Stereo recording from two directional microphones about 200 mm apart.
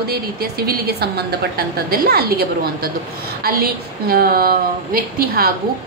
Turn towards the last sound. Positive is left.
turn(degrees=-50)  # may be behind; listen again after turning